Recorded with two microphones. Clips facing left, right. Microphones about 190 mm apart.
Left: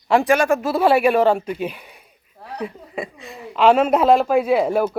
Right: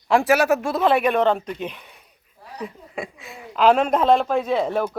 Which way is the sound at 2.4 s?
65° left (ahead or behind).